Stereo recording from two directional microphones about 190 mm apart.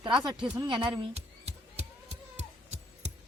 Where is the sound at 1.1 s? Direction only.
35° right (ahead or behind).